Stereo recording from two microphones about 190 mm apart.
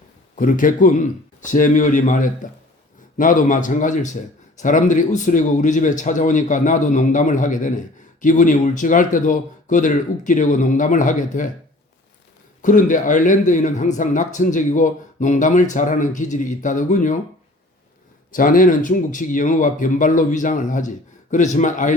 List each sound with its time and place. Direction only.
0.3 s speech: 45° left (ahead or behind)
12.6 s speech: 45° left (ahead or behind)
18.3 s speech: 45° left (ahead or behind)